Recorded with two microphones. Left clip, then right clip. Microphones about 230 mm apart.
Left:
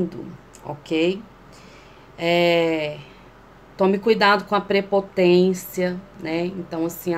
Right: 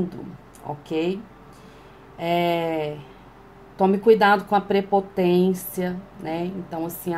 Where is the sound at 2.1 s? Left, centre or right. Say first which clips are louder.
Left 4 dB; left.